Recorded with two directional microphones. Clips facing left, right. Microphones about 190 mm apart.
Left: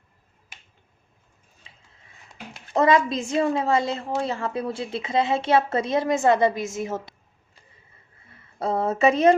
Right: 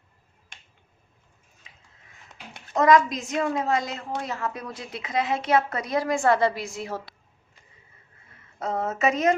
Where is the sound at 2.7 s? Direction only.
30° left (ahead or behind).